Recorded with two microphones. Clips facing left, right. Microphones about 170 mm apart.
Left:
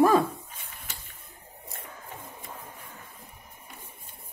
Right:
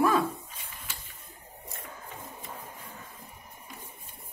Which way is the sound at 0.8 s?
55° left (ahead or behind).